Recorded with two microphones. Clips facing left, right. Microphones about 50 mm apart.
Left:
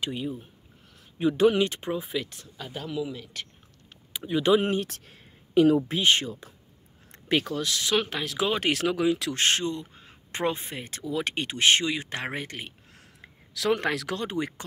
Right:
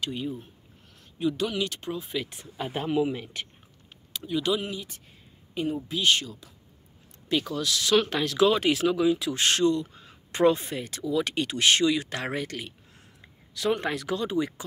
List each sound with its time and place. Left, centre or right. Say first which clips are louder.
0.1 s speech: even; centre
1.1 s speech: left 6 dB; left
2.2 s speech: right 3 dB; centre
2.5 s speech: right 6 dB; right
4.1 s speech: left 5 dB; left
4.8 s speech: left 5 dB; left
5.9 s speech: left 1 dB; left
8.1 s speech: right 6 dB; centre
8.5 s speech: right 2 dB; left
9.4 s speech: right 3 dB; left
12.9 s a sound: left 2 dB; left
14.2 s speech: right 6 dB; left